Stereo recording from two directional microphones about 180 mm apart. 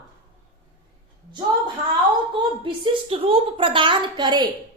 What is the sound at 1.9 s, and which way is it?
A woman's voice, 25° right (ahead or behind).